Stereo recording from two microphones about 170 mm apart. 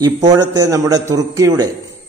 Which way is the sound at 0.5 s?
20° right (ahead or behind).